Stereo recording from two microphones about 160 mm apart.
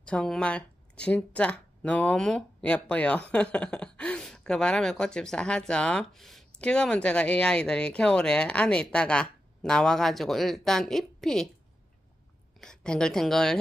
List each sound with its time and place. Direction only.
0.0 s speech: 5° left (ahead or behind)
12.5 s speech: 5° left (ahead or behind)